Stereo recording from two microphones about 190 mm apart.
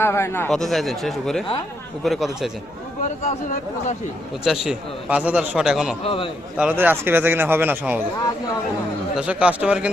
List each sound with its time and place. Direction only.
0.0 s a man's voice: 10° left (ahead or behind)
0.5 s a man's voice: centre (ahead or behind)
3.2 s speech: 40° left (ahead or behind)
4.6 s a man's voice: 5° right (ahead or behind)
6.0 s a man's voice: 30° left (ahead or behind)
6.6 s a man's voice: 10° right (ahead or behind)
9.1 s a man's voice: 5° right (ahead or behind)